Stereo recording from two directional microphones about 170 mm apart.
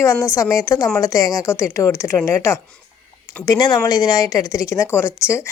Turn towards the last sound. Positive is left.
turn(degrees=15)  # may be behind; listen again after turning